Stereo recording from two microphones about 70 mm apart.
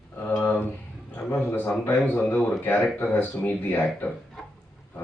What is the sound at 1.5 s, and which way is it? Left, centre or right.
A man's voice, left.